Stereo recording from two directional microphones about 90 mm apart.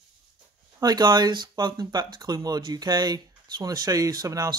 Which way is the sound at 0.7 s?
50° right (ahead or behind).